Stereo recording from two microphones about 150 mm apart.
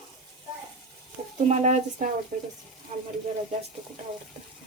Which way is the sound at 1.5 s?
55° right (ahead or behind).